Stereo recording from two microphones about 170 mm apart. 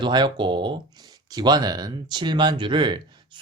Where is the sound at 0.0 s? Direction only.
25° right (ahead or behind).